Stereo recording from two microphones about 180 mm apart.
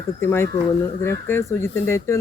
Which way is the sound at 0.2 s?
15° left (ahead or behind).